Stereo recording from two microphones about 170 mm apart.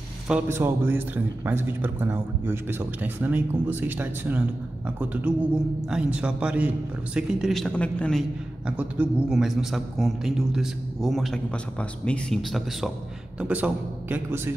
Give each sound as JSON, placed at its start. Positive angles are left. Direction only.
{"t": 0.3, "sound": "a man's voice", "side_deg": -15}